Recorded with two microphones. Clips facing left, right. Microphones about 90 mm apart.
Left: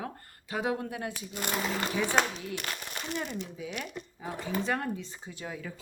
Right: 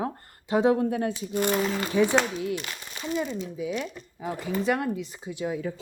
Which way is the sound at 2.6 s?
50° left (ahead or behind).